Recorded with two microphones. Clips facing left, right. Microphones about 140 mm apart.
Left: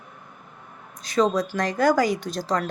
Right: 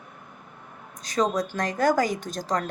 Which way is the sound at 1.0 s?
40° right (ahead or behind).